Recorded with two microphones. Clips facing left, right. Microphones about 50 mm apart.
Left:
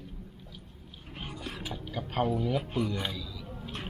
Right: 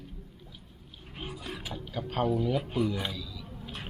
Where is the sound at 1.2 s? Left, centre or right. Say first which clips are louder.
Right 1 dB; centre.